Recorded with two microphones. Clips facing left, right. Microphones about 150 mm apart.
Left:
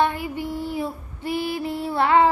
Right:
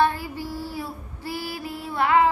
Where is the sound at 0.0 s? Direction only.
20° left (ahead or behind).